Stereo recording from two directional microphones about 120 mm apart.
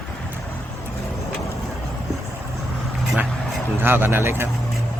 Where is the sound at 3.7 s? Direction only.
15° right (ahead or behind).